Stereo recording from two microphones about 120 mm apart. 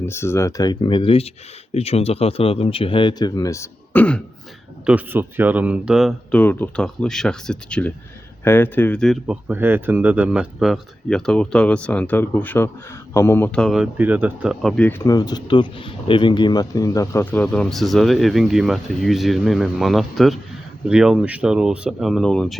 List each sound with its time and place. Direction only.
0.0 s speech: 20° left (ahead or behind)
3.9 s speech: 10° left (ahead or behind)
4.9 s speech: 15° right (ahead or behind)
6.3 s speech: 15° left (ahead or behind)
6.8 s speech: 5° left (ahead or behind)
9.2 s speech: 15° right (ahead or behind); by 13.5 s 20° left (ahead or behind)
13.5 s speech: 5° left (ahead or behind)
13.7 s speech: 5° right (ahead or behind)
14.6 s speech: 5° left (ahead or behind)
15.0 s speech: 30° left (ahead or behind)
17.3 s speech: 10° left (ahead or behind)